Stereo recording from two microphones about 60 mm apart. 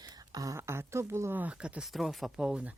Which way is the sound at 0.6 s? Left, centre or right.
Right.